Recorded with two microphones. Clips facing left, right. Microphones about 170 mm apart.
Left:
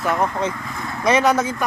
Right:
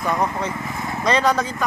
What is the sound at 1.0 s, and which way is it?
Speech, 20° left (ahead or behind).